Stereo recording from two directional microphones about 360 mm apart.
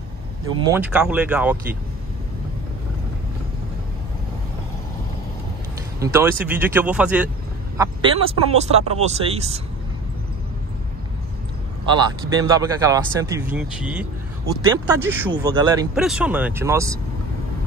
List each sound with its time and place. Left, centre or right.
0.5 s speech: centre
5.9 s speech: centre
11.9 s speech: centre